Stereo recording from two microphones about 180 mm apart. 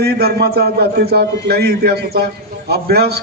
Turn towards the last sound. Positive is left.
turn(degrees=-60)  # may be behind; listen again after turning